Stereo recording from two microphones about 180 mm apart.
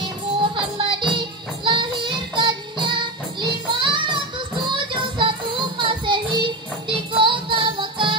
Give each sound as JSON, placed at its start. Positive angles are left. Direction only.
{"t": 0.4, "sound": "music", "side_deg": -30}
{"t": 5.2, "sound": "music", "side_deg": -25}